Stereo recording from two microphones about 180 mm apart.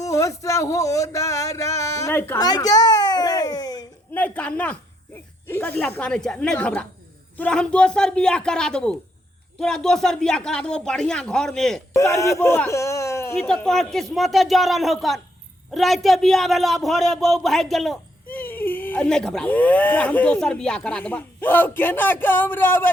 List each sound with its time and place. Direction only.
0.0 s speech: 20° left (ahead or behind)
4.1 s a woman's voice: 10° left (ahead or behind)
11.9 s speech: 15° left (ahead or behind)
13.5 s speech: 5° left (ahead or behind)